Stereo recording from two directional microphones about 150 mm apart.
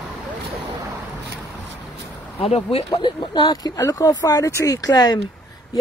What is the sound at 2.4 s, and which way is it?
Speech, 40° left (ahead or behind).